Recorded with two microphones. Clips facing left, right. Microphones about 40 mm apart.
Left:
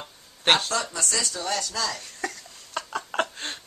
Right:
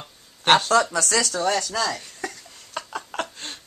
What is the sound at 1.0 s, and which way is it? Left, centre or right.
Speech, right.